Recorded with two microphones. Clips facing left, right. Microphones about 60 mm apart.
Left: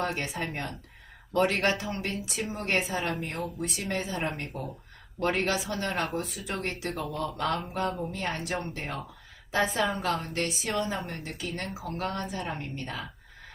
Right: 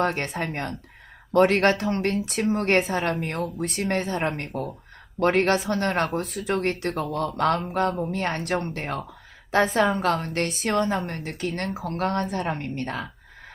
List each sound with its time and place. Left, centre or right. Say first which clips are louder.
0.0 s a woman's voice: right 6 dB; right